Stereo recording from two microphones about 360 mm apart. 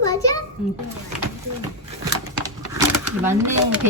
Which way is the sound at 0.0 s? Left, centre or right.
Centre.